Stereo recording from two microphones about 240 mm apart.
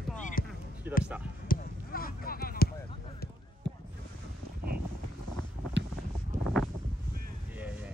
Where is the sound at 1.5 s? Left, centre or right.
Left.